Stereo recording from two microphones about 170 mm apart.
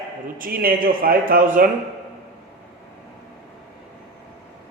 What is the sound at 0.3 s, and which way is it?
Speech, 55° right (ahead or behind).